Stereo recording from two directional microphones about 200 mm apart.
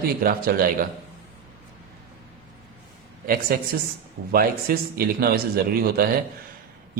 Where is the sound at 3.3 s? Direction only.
45° right (ahead or behind).